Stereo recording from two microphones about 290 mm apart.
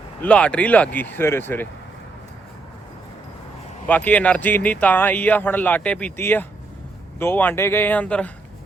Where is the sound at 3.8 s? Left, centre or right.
Centre.